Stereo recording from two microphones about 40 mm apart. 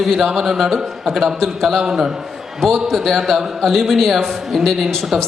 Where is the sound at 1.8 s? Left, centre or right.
Centre.